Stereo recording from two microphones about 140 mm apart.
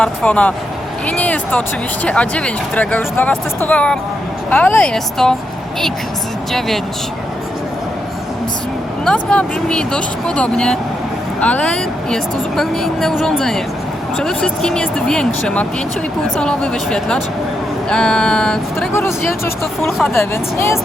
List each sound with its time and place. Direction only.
0.0 s speech: 10° left (ahead or behind)
1.0 s music: 10° left (ahead or behind)
2.0 s speech: 10° left (ahead or behind)
9.0 s speech: 5° left (ahead or behind)
18.9 s speech: 15° left (ahead or behind)